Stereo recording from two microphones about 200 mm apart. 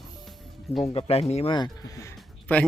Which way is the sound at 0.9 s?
30° left (ahead or behind).